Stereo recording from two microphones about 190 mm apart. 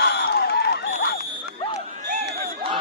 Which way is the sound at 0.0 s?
60° left (ahead or behind).